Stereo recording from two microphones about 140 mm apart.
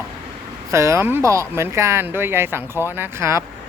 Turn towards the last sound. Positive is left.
turn(degrees=-20)  # may be behind; listen again after turning